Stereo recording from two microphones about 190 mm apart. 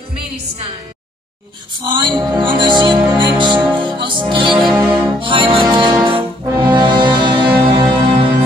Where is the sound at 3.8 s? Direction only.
25° right (ahead or behind).